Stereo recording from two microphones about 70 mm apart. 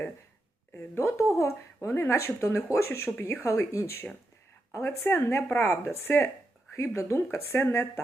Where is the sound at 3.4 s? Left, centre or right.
Left.